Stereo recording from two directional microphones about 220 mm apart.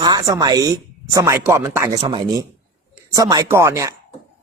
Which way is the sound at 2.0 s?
25° right (ahead or behind).